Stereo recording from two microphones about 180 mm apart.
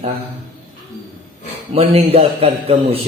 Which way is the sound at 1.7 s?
35° right (ahead or behind).